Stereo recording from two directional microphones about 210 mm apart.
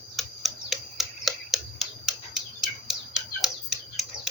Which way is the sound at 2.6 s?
Centre (ahead or behind).